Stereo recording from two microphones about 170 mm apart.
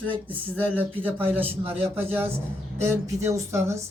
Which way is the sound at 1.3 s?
10° right (ahead or behind).